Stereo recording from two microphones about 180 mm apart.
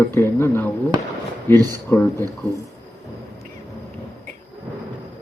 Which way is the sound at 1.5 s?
20° right (ahead or behind).